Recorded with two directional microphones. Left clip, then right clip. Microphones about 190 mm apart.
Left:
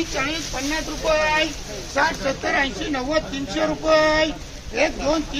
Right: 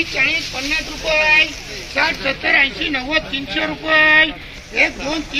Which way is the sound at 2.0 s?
10° left (ahead or behind).